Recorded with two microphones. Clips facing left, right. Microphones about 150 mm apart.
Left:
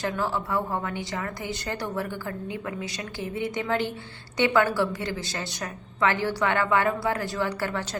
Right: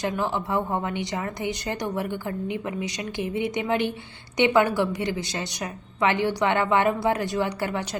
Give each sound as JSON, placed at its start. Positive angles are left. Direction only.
{"t": 0.0, "sound": "speech", "side_deg": -20}